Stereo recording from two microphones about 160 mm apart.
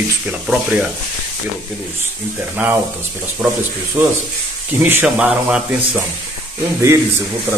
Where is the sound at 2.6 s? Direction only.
10° right (ahead or behind).